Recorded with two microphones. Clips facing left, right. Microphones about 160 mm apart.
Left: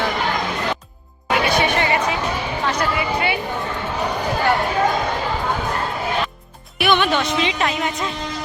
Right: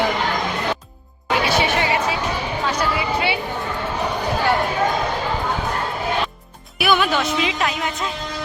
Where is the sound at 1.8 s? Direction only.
5° right (ahead or behind).